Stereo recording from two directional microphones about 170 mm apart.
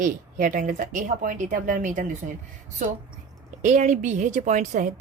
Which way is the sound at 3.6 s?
45° right (ahead or behind).